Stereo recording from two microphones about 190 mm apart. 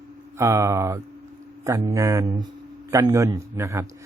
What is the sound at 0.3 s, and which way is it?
Speech, 15° right (ahead or behind).